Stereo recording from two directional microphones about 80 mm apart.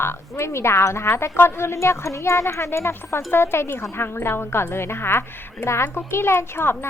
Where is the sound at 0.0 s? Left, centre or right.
Left.